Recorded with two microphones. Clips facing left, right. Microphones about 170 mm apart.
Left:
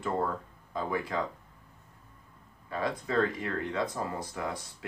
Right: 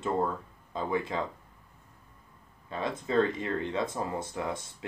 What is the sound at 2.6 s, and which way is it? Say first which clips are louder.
Speech: even; 25° right (ahead or behind).